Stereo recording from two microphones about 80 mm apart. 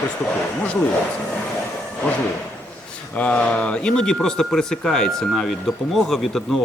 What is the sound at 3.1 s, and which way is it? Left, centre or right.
Speech, centre.